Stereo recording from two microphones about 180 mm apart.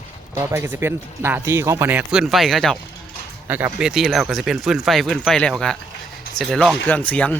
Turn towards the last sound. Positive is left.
turn(degrees=10)  # may be behind; listen again after turning